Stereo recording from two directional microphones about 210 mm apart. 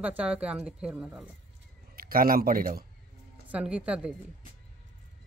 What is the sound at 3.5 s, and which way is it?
Speech, 5° right (ahead or behind).